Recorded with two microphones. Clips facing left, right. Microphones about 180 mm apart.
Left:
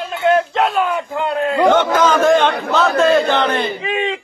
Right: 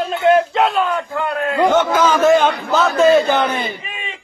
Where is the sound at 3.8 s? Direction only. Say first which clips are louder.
Left 13 dB; 85° left.